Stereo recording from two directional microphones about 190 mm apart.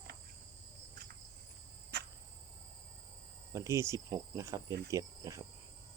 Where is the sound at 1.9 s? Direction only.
60° right (ahead or behind).